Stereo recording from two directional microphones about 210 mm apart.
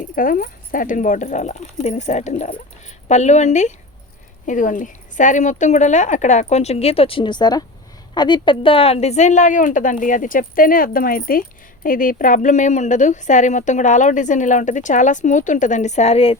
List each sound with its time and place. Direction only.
0.2 s a woman's voice: 40° left (ahead or behind)